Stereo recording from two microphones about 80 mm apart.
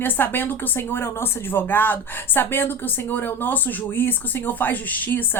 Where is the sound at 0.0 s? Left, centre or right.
Left.